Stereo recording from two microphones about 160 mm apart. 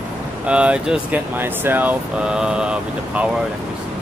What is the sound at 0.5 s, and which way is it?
Speech, 5° right (ahead or behind).